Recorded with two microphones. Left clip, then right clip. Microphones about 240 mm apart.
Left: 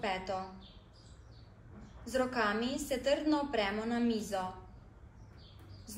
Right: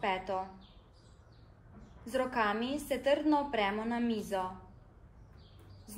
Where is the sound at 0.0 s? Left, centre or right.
Right.